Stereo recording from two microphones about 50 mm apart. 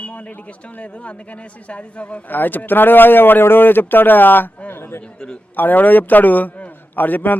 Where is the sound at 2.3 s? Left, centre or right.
Left.